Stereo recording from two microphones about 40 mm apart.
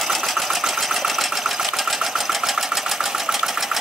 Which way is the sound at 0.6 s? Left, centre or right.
Centre.